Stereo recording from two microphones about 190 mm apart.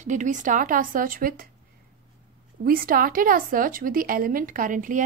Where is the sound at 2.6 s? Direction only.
50° right (ahead or behind).